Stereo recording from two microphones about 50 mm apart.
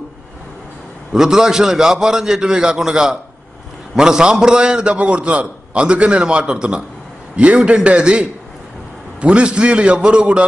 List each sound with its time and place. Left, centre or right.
1.1 s a man's voice: centre